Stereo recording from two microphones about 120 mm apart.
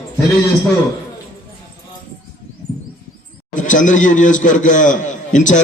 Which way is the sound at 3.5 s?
90° left.